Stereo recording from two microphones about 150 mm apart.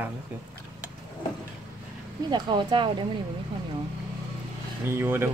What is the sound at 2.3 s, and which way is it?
Speech, 30° right (ahead or behind).